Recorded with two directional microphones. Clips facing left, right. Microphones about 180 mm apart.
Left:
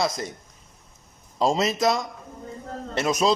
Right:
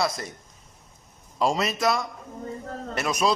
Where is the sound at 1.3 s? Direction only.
25° left (ahead or behind).